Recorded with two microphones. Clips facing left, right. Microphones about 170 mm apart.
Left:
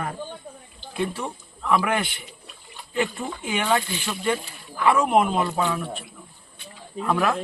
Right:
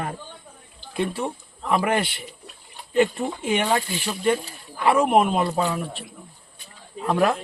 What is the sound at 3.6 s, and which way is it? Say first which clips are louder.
Speech: even; 35° right (ahead or behind).